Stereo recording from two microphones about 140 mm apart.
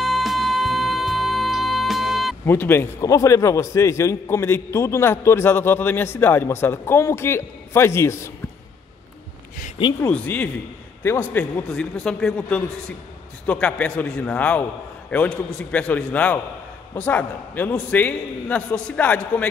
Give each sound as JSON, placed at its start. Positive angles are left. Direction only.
{"t": 0.0, "sound": "music", "side_deg": 0}
{"t": 2.4, "sound": "a man's voice", "side_deg": 15}
{"t": 10.0, "sound": "a man's voice", "side_deg": 10}